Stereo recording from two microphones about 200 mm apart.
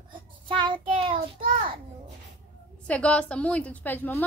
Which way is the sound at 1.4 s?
45° right (ahead or behind).